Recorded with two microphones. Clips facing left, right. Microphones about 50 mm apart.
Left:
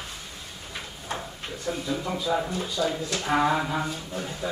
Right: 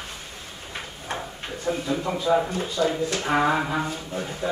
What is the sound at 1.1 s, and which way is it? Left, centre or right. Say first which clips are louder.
Drawer open or close: right 2 dB; right.